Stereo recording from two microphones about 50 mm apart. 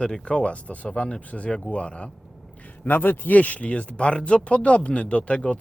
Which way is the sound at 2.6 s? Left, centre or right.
Left.